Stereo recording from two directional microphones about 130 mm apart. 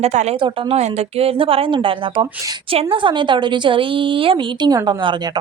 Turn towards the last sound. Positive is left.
turn(degrees=-35)  # may be behind; listen again after turning